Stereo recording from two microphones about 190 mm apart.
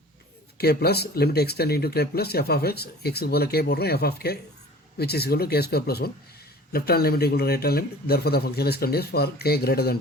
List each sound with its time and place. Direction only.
0.6 s speech: 55° left (ahead or behind)